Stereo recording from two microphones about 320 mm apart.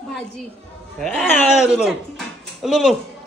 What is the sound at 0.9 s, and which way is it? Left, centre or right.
Speech, centre.